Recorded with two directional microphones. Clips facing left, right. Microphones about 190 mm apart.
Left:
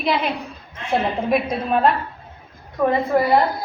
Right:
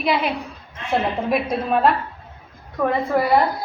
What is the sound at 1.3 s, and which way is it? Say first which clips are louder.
Speech: left 1 dB; centre (ahead or behind).